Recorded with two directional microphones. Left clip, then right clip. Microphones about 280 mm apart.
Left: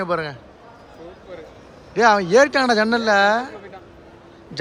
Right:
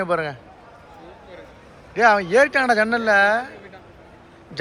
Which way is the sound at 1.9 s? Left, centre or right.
Centre.